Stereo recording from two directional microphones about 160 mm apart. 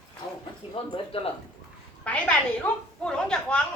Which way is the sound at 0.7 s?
35° left (ahead or behind).